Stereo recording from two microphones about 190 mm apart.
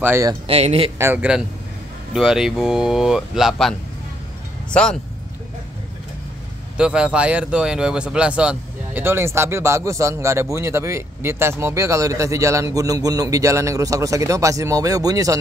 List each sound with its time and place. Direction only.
0.0 s speech: 15° right (ahead or behind)
0.5 s speech: 30° right (ahead or behind)
0.9 s speech: 10° right (ahead or behind)
6.8 s speech: 5° right (ahead or behind)